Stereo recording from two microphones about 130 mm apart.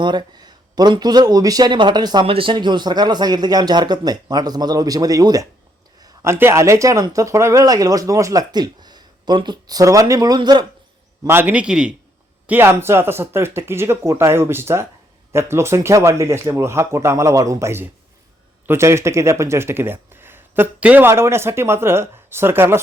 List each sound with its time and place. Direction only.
0.0 s a man's voice: 35° right (ahead or behind)
2.2 s a man's voice: 45° right (ahead or behind)
11.2 s a man's voice: 15° right (ahead or behind)